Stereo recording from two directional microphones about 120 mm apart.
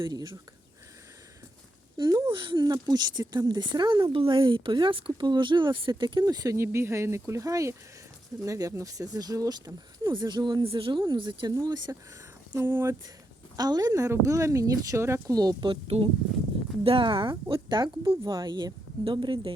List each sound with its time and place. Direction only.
0.0 s speech: 35° right (ahead or behind)
2.0 s speech: 40° right (ahead or behind)
11.5 s a woman's voice: 30° right (ahead or behind)
12.5 s a woman's voice: 20° right (ahead or behind)
13.6 s a woman's voice: 35° right (ahead or behind)
15.7 s speech: 50° right (ahead or behind)